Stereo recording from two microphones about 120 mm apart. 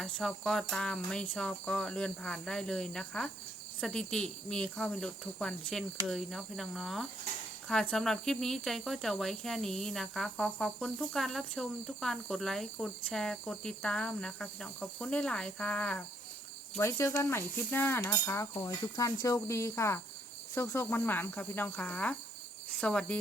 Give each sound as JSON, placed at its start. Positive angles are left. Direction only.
{"t": 0.0, "sound": "cricket", "side_deg": 5}
{"t": 6.1, "sound": "speech", "side_deg": 0}
{"t": 16.7, "sound": "speech", "side_deg": 20}
{"t": 20.6, "sound": "cricket", "side_deg": 20}